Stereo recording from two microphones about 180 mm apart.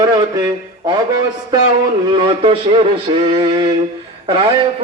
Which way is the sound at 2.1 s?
30° right (ahead or behind).